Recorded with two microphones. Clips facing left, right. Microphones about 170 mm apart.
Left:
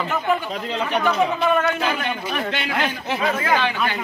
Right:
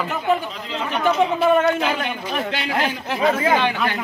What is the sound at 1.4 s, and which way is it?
Speech, 30° right (ahead or behind).